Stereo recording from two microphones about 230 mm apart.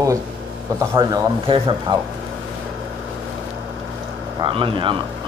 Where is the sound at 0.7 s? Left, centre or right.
Centre.